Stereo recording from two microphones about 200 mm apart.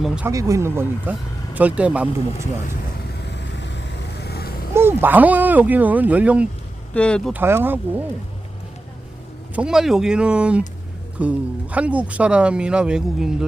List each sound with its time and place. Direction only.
0.0 s speech: 5° right (ahead or behind)
0.3 s speech: 15° right (ahead or behind)
3.6 s vehicle: 60° left (ahead or behind)
4.7 s speech: 10° right (ahead or behind)
6.9 s speech: 5° left (ahead or behind)
7.3 s speech: 10° right (ahead or behind)
9.6 s speech: 5° right (ahead or behind)